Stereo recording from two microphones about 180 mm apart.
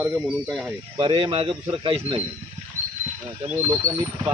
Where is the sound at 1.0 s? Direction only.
30° right (ahead or behind).